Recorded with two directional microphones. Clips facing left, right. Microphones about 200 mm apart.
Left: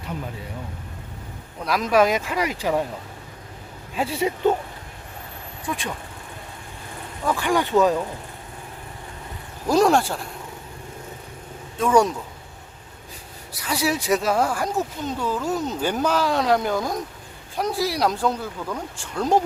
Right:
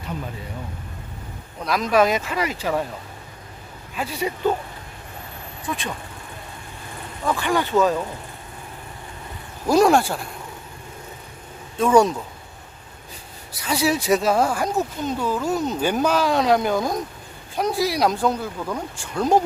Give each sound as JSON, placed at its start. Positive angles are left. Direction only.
{"t": 1.6, "sound": "speech", "side_deg": 10}
{"t": 3.9, "sound": "speech", "side_deg": 25}
{"t": 5.6, "sound": "speech", "side_deg": 10}
{"t": 7.3, "sound": "speech", "side_deg": 10}
{"t": 9.6, "sound": "speech", "side_deg": -10}
{"t": 11.8, "sound": "speech", "side_deg": -25}
{"t": 13.6, "sound": "speech", "side_deg": -25}